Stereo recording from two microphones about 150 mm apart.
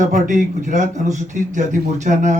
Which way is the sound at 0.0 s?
60° right (ahead or behind).